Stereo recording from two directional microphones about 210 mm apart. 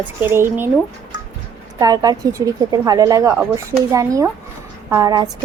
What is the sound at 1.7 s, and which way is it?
Speech, 20° right (ahead or behind).